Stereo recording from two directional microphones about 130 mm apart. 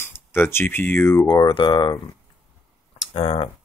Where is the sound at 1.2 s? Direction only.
35° left (ahead or behind).